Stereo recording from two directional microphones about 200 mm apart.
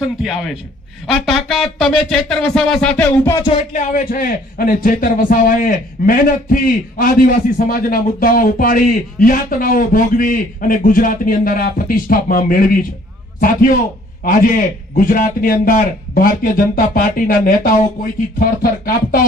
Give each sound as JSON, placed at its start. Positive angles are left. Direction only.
{"t": 0.2, "sound": "speech", "side_deg": 0}
{"t": 3.7, "sound": "speech", "side_deg": 40}